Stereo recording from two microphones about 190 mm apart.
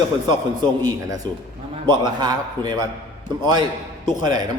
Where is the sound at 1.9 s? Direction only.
20° right (ahead or behind).